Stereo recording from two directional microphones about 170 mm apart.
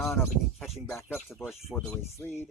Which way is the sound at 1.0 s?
15° left (ahead or behind).